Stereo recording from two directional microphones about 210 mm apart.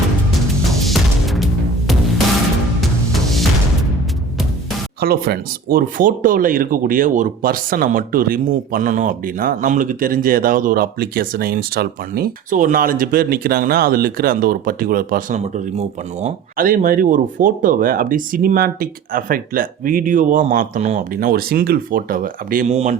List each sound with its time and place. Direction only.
0.9 s music: centre (ahead or behind)
2.8 s music: centre (ahead or behind)
4.9 s speech: 50° right (ahead or behind)